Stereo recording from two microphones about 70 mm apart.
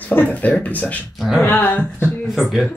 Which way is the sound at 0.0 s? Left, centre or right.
Left.